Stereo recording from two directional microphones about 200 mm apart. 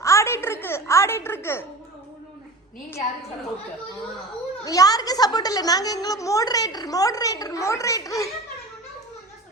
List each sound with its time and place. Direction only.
0.0 s music: 15° left (ahead or behind)
4.6 s a woman's voice: 20° left (ahead or behind)